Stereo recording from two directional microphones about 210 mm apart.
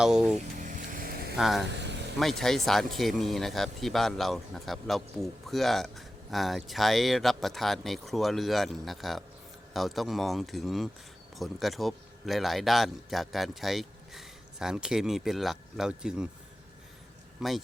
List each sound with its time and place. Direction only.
0.0 s speech: 5° right (ahead or behind)
0.6 s vehicle: 40° right (ahead or behind)
1.4 s speech: centre (ahead or behind)
1.8 s vehicle: 55° right (ahead or behind)
2.1 s speech: centre (ahead or behind)
17.4 s speech: centre (ahead or behind)